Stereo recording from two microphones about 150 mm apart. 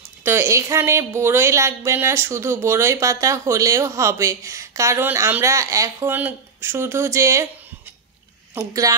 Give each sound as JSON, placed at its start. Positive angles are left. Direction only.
{"t": 0.2, "sound": "a woman's voice", "side_deg": -15}
{"t": 8.5, "sound": "a woman's voice", "side_deg": -25}